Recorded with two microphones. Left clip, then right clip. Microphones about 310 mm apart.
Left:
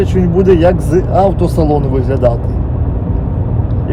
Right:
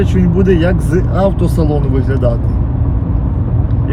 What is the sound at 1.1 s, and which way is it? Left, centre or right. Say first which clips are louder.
Speech: left 4 dB; left.